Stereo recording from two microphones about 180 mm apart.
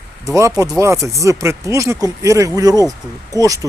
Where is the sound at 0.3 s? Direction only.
15° right (ahead or behind).